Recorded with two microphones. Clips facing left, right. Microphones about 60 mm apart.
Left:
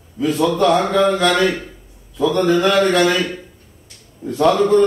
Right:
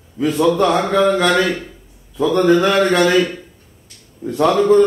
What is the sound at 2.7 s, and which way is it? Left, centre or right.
Speech, right.